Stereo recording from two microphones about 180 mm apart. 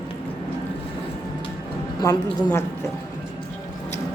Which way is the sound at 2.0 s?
20° left (ahead or behind).